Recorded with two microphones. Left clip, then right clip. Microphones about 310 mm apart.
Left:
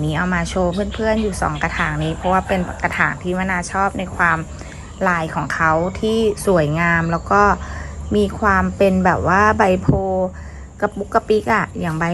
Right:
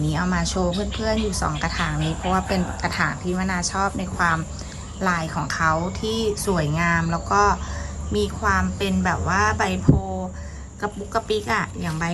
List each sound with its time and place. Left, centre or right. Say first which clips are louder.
0.1 s a woman's voice: left 5 dB; centre